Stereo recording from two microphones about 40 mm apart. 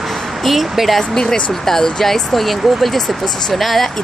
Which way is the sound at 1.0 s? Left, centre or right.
Centre.